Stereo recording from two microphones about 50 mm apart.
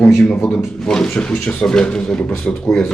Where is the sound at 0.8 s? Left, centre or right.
Centre.